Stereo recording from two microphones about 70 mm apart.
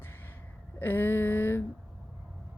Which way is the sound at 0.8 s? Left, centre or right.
Left.